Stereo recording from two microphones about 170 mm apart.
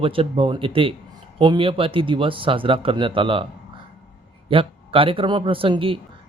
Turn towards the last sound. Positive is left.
turn(degrees=-30)  # may be behind; listen again after turning